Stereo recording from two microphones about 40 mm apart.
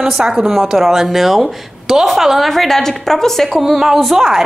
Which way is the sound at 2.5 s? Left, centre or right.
Centre.